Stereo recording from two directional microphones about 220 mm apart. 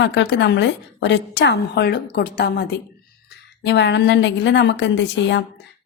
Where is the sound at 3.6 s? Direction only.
55° left (ahead or behind).